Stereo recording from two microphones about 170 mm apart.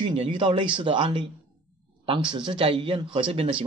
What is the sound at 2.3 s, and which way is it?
A man's voice, 25° right (ahead or behind).